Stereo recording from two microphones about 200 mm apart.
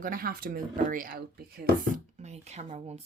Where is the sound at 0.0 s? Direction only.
45° right (ahead or behind).